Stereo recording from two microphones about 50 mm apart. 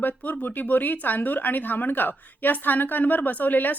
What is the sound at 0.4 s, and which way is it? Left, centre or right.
A woman's voice, left.